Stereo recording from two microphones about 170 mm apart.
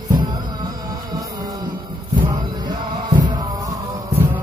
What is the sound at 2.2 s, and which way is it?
Music, 25° right (ahead or behind).